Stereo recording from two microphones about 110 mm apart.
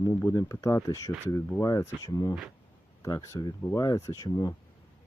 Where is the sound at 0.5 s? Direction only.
30° left (ahead or behind).